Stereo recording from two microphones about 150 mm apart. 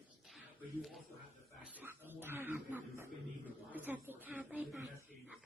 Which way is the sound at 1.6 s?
10° right (ahead or behind).